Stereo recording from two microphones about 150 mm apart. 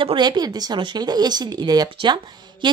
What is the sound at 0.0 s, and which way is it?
Speech, 35° right (ahead or behind).